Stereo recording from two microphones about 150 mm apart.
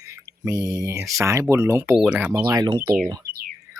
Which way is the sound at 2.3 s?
15° right (ahead or behind).